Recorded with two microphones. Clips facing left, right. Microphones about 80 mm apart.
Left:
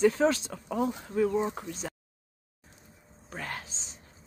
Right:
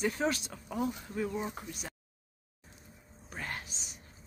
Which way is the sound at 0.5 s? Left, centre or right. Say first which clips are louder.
Left 5 dB; left.